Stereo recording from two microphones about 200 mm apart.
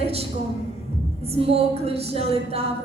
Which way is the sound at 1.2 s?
30° right (ahead or behind).